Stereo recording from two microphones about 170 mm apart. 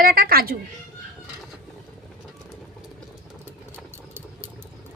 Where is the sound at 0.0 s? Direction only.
60° right (ahead or behind).